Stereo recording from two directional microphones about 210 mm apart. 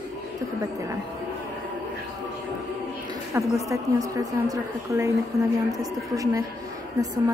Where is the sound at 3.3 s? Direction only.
15° right (ahead or behind).